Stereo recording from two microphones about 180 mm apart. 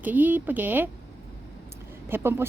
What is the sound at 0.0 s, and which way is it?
Speech, 10° right (ahead or behind).